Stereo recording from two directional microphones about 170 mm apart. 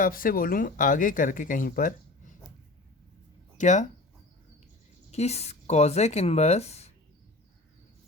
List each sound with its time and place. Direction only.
0.0 s speech: 55° left (ahead or behind)
3.6 s speech: 45° left (ahead or behind)
5.1 s speech: 40° left (ahead or behind)